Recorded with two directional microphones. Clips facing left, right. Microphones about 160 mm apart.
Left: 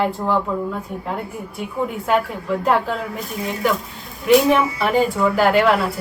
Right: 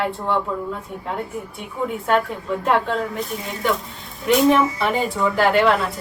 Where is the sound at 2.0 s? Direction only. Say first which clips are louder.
Even; 5° left (ahead or behind).